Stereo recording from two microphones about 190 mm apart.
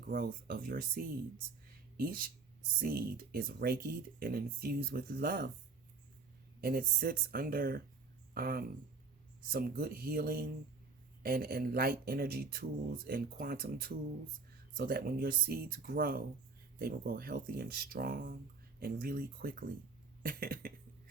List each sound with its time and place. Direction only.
0.1 s speech: 50° right (ahead or behind)
6.6 s speech: 50° right (ahead or behind)